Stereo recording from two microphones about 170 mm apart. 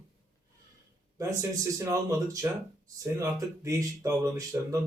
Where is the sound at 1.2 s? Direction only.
20° right (ahead or behind).